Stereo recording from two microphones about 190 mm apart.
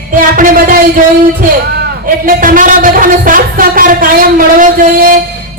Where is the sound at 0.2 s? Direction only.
45° right (ahead or behind).